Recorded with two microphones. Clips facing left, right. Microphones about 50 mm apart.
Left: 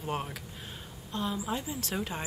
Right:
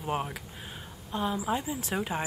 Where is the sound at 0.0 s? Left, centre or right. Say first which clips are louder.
Right 3 dB; centre.